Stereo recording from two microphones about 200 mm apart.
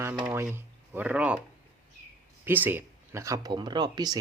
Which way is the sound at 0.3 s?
10° right (ahead or behind).